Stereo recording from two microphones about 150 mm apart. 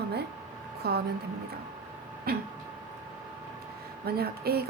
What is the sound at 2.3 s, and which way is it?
Speech, 90° right.